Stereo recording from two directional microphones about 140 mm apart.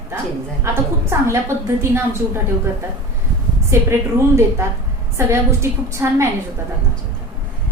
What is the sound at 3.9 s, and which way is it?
A woman's voice, 20° right (ahead or behind).